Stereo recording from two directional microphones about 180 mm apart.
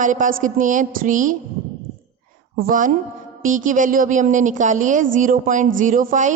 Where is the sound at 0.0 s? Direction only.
45° right (ahead or behind).